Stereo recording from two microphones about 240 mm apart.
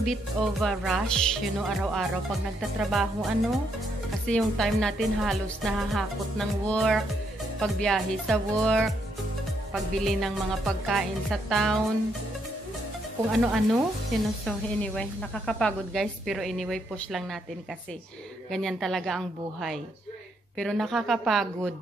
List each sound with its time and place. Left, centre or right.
0.0 s a woman's voice: centre
13.3 s a woman's voice: centre
18.5 s a woman's voice: centre